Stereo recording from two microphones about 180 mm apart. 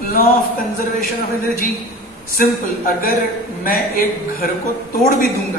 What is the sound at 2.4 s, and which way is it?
A man's voice, 55° left (ahead or behind).